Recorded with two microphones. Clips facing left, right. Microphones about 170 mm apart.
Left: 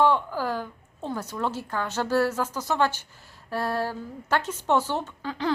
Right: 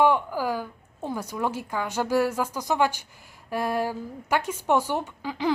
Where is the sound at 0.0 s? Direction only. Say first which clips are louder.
Right 1 dB; 15° right (ahead or behind).